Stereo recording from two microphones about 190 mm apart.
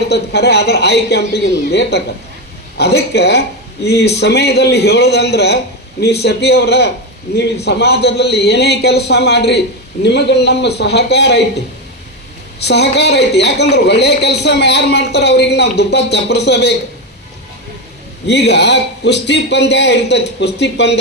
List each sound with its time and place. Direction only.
0.1 s a man's voice: 60° left (ahead or behind)
12.6 s a man's voice: 60° left (ahead or behind)
18.3 s a man's voice: 60° left (ahead or behind)